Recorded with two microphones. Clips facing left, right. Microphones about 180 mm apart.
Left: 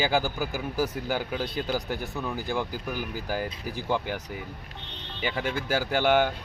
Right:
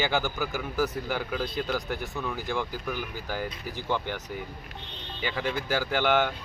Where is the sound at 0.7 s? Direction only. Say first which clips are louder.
Even; 30° left (ahead or behind); by 4.2 s 10° left (ahead or behind).